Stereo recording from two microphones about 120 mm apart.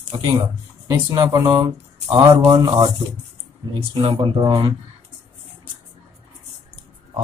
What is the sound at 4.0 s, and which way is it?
Speech, 40° right (ahead or behind).